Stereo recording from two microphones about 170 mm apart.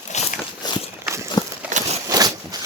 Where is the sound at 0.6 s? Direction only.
25° left (ahead or behind).